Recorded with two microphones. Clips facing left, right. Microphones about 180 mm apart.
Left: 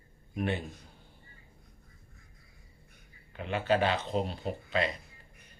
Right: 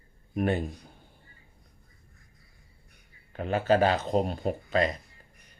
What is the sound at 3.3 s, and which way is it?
Speech, 40° right (ahead or behind).